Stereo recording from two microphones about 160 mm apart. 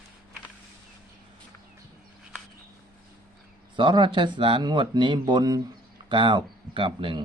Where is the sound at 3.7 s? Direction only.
30° right (ahead or behind).